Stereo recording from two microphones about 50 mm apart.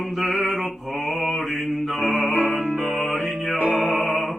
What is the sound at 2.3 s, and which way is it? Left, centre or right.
Music, right.